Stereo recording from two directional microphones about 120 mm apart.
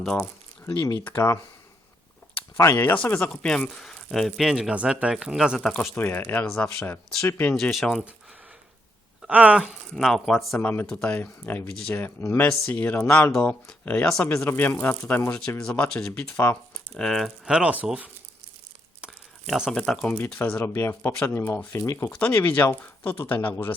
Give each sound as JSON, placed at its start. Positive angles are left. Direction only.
{"t": 0.0, "sound": "speech", "side_deg": 5}
{"t": 1.0, "sound": "speech", "side_deg": 25}
{"t": 2.6, "sound": "speech", "side_deg": 20}
{"t": 6.0, "sound": "speech", "side_deg": 20}
{"t": 6.5, "sound": "speech", "side_deg": 5}
{"t": 7.2, "sound": "speech", "side_deg": 20}
{"t": 7.5, "sound": "speech", "side_deg": 0}
{"t": 9.2, "sound": "speech", "side_deg": -10}
{"t": 9.9, "sound": "speech", "side_deg": 0}
{"t": 11.1, "sound": "speech", "side_deg": 15}
{"t": 16.9, "sound": "speech", "side_deg": 5}
{"t": 19.0, "sound": "a sound", "side_deg": -5}
{"t": 19.7, "sound": "speech", "side_deg": 5}
{"t": 20.4, "sound": "speech", "side_deg": 15}